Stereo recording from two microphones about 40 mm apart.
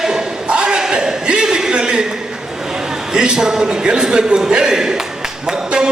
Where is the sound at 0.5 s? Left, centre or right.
Right.